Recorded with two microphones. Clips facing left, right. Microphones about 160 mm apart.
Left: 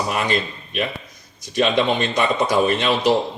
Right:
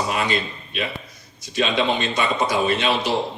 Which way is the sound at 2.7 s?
45° left (ahead or behind).